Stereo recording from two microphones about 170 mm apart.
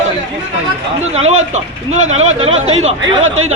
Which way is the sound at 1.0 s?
40° right (ahead or behind).